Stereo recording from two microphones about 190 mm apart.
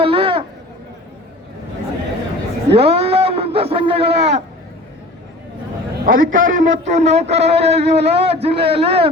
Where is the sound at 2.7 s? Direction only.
30° right (ahead or behind).